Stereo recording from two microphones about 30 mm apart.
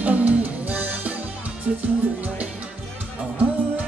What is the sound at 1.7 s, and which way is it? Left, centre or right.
Music, right.